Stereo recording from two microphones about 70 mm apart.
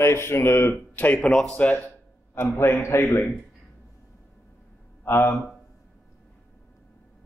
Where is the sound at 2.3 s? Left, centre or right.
Left.